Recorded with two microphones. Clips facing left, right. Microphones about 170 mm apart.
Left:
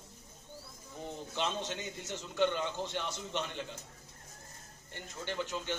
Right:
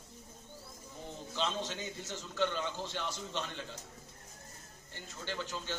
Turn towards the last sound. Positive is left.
turn(degrees=15)  # may be behind; listen again after turning